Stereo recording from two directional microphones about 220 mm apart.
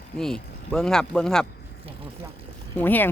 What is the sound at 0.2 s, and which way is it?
Speech, 5° left (ahead or behind).